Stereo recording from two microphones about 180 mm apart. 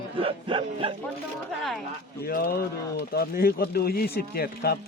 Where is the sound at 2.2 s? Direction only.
55° left (ahead or behind).